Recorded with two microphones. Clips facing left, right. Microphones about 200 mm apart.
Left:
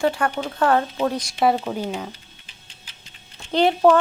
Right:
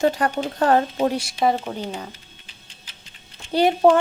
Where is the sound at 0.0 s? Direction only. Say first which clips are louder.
Right 1 dB; 40° right (ahead or behind).